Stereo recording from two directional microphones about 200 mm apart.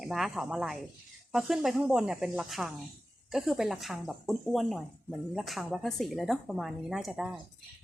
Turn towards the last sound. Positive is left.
turn(degrees=-5)  # may be behind; listen again after turning